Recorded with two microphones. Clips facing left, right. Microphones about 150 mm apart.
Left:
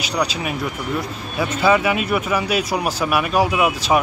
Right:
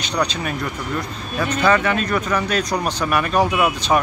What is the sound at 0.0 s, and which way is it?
Speech, 5° left (ahead or behind).